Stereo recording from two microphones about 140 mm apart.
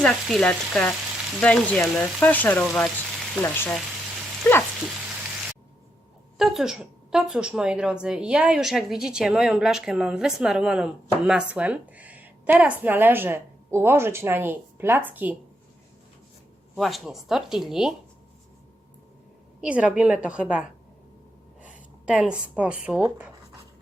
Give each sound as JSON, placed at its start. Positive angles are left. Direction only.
{"t": 0.0, "sound": "speech", "side_deg": 5}
{"t": 2.2, "sound": "frying", "side_deg": 10}
{"t": 2.6, "sound": "speech", "side_deg": 0}
{"t": 3.4, "sound": "frying", "side_deg": 15}
{"t": 4.4, "sound": "a sound", "side_deg": 10}
{"t": 6.3, "sound": "a woman's voice", "side_deg": 0}
{"t": 16.7, "sound": "speech", "side_deg": 0}
{"t": 19.6, "sound": "a woman's voice", "side_deg": -10}